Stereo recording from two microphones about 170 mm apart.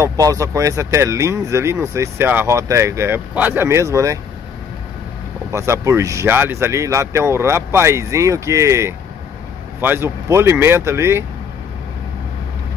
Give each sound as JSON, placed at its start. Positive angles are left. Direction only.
{"t": 0.0, "sound": "speech", "side_deg": -20}
{"t": 5.5, "sound": "speech", "side_deg": -15}